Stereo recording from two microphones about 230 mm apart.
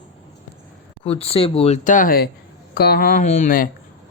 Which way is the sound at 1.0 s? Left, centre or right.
Left.